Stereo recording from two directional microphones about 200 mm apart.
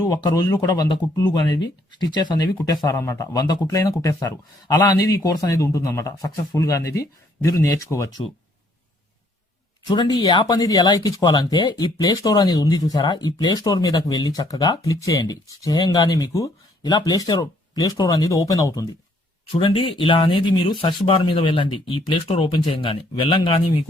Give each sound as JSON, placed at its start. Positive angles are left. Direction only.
{"t": 0.1, "sound": "speech", "side_deg": 20}
{"t": 9.9, "sound": "speech", "side_deg": 20}